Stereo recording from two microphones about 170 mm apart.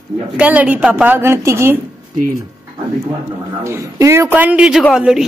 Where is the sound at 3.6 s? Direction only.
15° right (ahead or behind).